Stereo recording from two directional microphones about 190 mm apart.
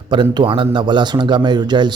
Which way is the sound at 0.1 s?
25° right (ahead or behind).